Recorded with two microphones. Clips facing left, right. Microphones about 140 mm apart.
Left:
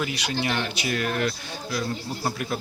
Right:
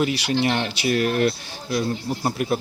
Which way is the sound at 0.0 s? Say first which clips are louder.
Right 6 dB; 25° right (ahead or behind).